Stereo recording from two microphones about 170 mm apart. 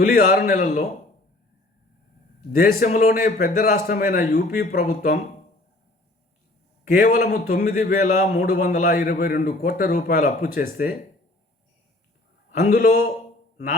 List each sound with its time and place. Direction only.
0.1 s a man's voice: 55° left (ahead or behind)
2.6 s a man's voice: 50° left (ahead or behind)
6.8 s a man's voice: 50° left (ahead or behind)
12.5 s a man's voice: 50° left (ahead or behind)